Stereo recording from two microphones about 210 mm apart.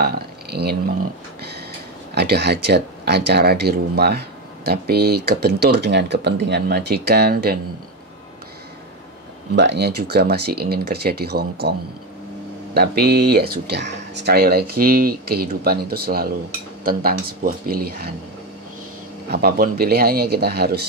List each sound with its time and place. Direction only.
0.0 s a sound: 50° right (ahead or behind)
2.1 s speech: 50° right (ahead or behind)
9.6 s speech: 55° right (ahead or behind)
12.7 s speech: 50° right (ahead or behind)
19.2 s speech: 50° right (ahead or behind)